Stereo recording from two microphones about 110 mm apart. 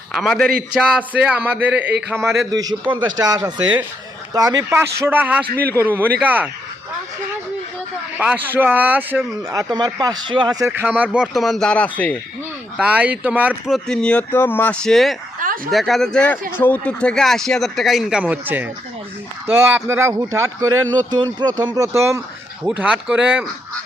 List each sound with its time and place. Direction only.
0.1 s a man's voice: centre (ahead or behind); by 2.3 s 20° right (ahead or behind)
2.5 s a man's voice: 35° right (ahead or behind); by 6.5 s 15° right (ahead or behind)
8.2 s a man's voice: 15° right (ahead or behind)
9.5 s speech: 35° right (ahead or behind)
10.7 s speech: 15° right (ahead or behind); by 12.1 s 10° left (ahead or behind)
12.7 s a man's voice: 10° right (ahead or behind)
13.7 s speech: 5° left (ahead or behind); by 22.2 s 25° right (ahead or behind)
22.6 s a man's voice: 10° right (ahead or behind)